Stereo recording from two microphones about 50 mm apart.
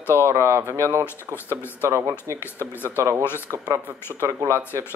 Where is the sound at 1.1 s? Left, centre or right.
Left.